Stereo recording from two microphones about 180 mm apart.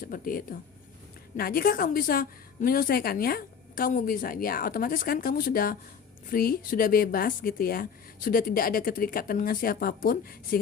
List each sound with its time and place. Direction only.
0.1 s a woman's voice: 50° left (ahead or behind)